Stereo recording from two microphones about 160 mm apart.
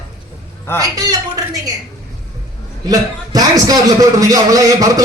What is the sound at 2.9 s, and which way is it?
A man's voice, 25° right (ahead or behind).